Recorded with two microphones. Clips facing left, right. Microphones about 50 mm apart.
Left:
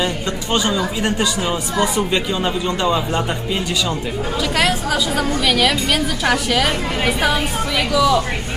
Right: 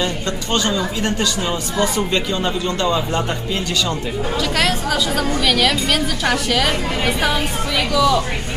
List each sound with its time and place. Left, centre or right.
0.5 s a woman's voice: centre
4.4 s a woman's voice: centre